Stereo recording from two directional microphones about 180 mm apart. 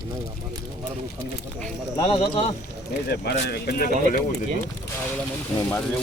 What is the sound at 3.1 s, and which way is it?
Speech, 60° left (ahead or behind).